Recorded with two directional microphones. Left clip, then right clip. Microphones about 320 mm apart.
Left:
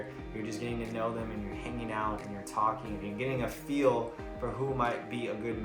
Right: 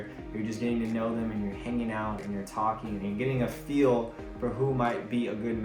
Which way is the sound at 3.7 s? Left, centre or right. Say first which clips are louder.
Right 3 dB; centre.